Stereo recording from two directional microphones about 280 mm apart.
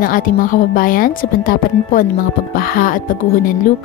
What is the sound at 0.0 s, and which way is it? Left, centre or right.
Speech, left.